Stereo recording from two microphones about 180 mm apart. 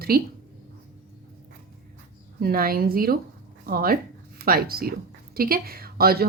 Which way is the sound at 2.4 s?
55° right (ahead or behind).